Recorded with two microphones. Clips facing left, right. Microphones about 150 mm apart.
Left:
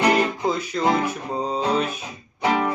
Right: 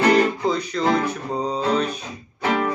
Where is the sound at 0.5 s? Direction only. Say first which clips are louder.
Right 1 dB; 10° left (ahead or behind).